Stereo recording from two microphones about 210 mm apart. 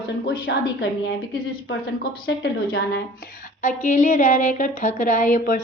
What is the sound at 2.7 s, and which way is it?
A woman's voice, 50° left (ahead or behind).